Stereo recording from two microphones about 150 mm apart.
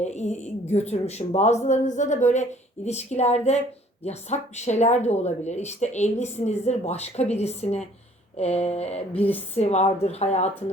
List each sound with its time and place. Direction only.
0.0 s speech: 50° left (ahead or behind)